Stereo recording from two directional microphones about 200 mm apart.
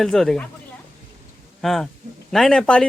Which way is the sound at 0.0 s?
Centre (ahead or behind).